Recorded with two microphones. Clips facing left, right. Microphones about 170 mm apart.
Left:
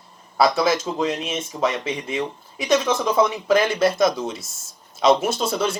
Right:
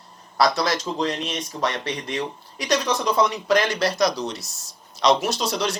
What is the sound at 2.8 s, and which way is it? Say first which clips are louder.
Speech: left 2 dB; 50° left (ahead or behind).